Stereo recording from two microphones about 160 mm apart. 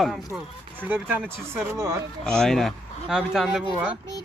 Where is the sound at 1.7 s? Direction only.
20° right (ahead or behind).